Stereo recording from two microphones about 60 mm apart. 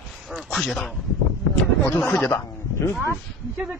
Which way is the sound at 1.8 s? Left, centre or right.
Left.